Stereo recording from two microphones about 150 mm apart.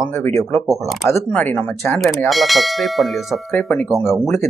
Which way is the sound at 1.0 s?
15° left (ahead or behind).